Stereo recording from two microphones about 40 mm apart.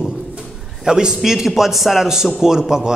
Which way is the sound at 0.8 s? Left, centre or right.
Centre.